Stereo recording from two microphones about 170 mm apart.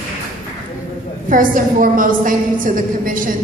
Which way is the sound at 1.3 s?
55° right (ahead or behind).